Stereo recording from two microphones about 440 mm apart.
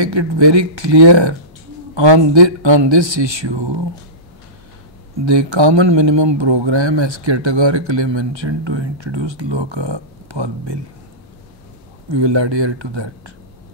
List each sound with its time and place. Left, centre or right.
0.0 s speech: right
5.2 s speech: right
12.1 s speech: right